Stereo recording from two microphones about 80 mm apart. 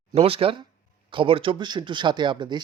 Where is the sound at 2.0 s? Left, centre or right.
Right.